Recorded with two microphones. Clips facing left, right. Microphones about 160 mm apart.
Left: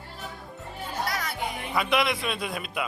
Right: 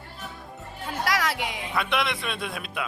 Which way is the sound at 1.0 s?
90° right.